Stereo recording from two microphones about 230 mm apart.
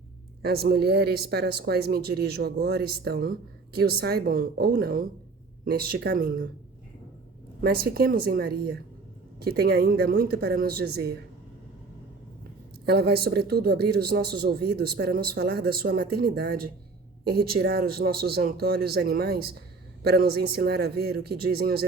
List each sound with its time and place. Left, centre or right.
0.4 s a woman's voice: right
7.6 s a woman's voice: right
12.8 s speech: right